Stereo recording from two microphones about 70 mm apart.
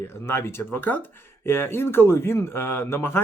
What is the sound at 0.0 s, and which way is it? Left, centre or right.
Speech, left.